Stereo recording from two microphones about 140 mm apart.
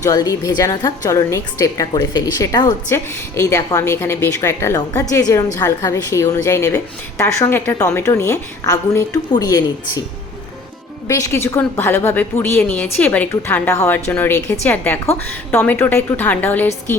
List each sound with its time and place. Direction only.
0.0 s a woman's voice: 25° left (ahead or behind)
11.1 s a woman's voice: 20° left (ahead or behind)